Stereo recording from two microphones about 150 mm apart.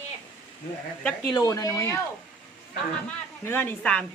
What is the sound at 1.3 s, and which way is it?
Cutlery, 25° left (ahead or behind).